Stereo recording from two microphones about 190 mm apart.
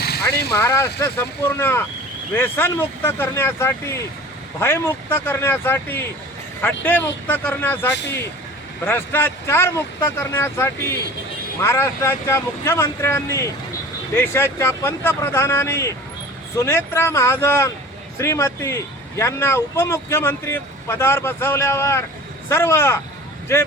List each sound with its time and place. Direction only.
0.0 s vehicle: 55° left (ahead or behind)
0.5 s speech: 15° left (ahead or behind)